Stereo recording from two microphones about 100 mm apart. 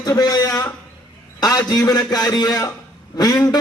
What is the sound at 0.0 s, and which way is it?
A man's voice, 40° left (ahead or behind).